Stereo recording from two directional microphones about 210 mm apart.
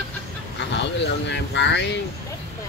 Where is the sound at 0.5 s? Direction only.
55° left (ahead or behind).